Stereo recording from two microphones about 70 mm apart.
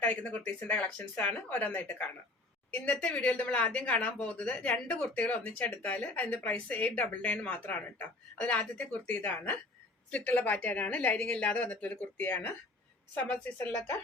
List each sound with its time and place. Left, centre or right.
0.0 s speech: left